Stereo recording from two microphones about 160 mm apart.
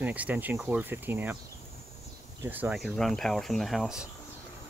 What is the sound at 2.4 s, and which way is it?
Speech, 10° right (ahead or behind).